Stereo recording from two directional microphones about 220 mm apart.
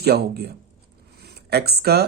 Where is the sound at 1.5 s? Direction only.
45° right (ahead or behind).